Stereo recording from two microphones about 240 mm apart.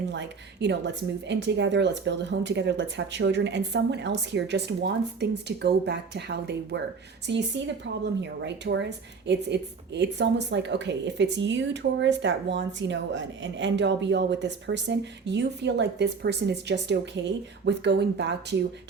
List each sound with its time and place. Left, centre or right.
0.1 s a woman's voice: right